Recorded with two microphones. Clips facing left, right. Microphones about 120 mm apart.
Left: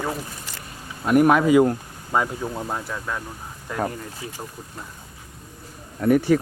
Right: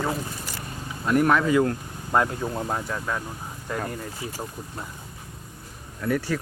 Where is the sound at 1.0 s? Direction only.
15° left (ahead or behind).